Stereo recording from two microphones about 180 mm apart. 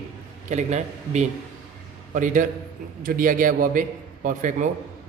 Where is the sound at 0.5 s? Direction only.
40° right (ahead or behind).